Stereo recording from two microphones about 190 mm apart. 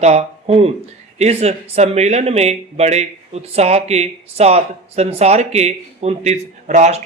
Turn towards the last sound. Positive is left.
turn(degrees=-35)  # may be behind; listen again after turning